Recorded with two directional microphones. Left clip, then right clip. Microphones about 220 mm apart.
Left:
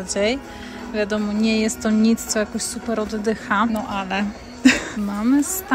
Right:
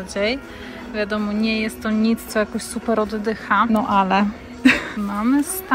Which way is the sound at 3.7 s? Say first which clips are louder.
Right 7 dB; centre (ahead or behind).